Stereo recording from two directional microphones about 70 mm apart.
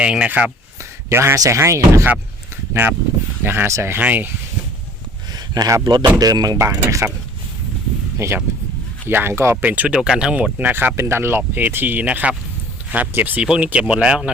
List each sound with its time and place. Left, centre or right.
0.0 s speech: centre
1.1 s speech: right
3.4 s speech: right
3.7 s speech: right
3.9 s speech: right
5.3 s speech: right
6.1 s speech: right
6.6 s speech: right
8.2 s speech: right
9.0 s speech: right
9.6 s speech: right
10.0 s speech: centre
10.3 s speech: right
13.4 s speech: centre